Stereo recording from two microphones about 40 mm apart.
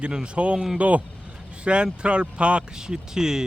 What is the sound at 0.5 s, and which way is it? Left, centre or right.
Speech, centre.